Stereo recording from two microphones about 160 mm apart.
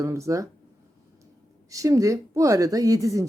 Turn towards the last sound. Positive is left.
turn(degrees=-20)  # may be behind; listen again after turning